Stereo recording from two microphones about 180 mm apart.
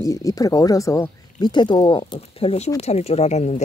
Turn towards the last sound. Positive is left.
turn(degrees=40)  # may be behind; listen again after turning